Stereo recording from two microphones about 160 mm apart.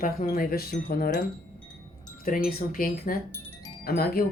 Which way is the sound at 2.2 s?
65° left (ahead or behind).